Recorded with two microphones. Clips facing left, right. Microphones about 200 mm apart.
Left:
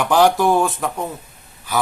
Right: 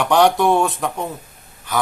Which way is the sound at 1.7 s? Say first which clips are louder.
Even; 5° left (ahead or behind).